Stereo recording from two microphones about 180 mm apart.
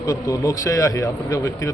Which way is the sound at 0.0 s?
20° left (ahead or behind).